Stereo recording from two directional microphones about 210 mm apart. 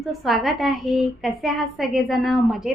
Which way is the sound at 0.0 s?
Centre (ahead or behind).